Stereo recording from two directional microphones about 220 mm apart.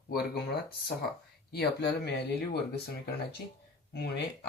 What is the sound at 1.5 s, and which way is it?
Speech, 50° left (ahead or behind).